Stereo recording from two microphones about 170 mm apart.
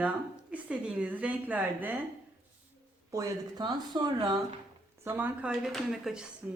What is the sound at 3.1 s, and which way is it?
Speech, 20° right (ahead or behind).